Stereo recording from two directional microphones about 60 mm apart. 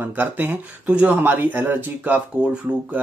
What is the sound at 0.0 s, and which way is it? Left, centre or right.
Speech, right.